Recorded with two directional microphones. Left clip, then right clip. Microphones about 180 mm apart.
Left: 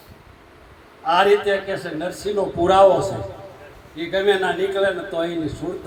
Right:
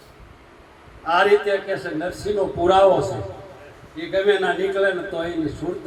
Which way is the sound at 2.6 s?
40° left (ahead or behind).